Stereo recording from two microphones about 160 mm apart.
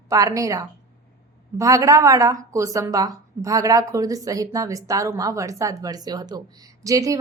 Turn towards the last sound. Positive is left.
turn(degrees=-20)  # may be behind; listen again after turning